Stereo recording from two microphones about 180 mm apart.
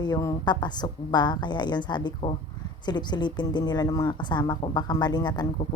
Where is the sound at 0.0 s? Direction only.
20° left (ahead or behind).